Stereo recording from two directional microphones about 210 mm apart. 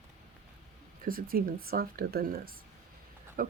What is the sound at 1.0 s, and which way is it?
Speech, 45° right (ahead or behind).